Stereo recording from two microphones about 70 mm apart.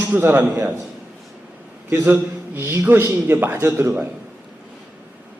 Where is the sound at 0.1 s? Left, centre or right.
Right.